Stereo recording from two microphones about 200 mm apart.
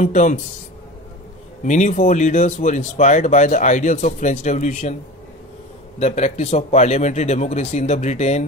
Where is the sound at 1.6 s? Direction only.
35° left (ahead or behind).